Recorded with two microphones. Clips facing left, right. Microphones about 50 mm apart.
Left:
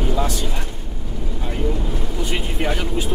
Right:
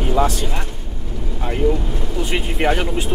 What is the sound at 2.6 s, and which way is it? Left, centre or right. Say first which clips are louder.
Speech: right 6 dB; right.